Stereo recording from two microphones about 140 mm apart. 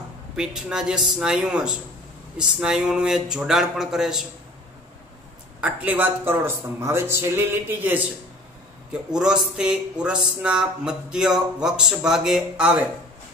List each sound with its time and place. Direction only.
0.4 s speech: 5° right (ahead or behind)
5.6 s a man's voice: 10° right (ahead or behind)
9.1 s speech: 5° right (ahead or behind)